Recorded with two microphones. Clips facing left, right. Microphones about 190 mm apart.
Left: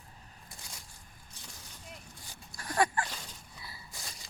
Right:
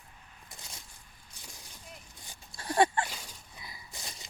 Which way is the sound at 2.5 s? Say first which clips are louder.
Right 3 dB; 25° right (ahead or behind).